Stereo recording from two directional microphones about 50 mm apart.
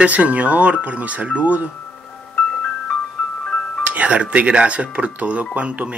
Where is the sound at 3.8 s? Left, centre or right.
Right.